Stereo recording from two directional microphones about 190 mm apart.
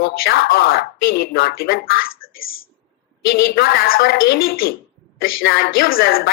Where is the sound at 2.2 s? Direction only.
90° left.